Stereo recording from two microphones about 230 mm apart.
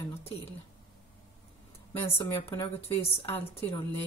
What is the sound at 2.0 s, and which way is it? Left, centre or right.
Speech, left.